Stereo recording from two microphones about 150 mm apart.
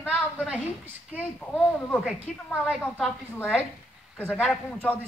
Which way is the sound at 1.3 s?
10° left (ahead or behind).